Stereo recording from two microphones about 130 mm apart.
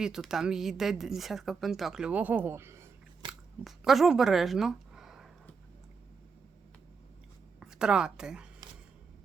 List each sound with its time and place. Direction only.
0.0 s a woman's voice: 5° right (ahead or behind)
3.2 s biting: 40° right (ahead or behind)
3.6 s speech: centre (ahead or behind)
7.6 s a woman's voice: 5° right (ahead or behind)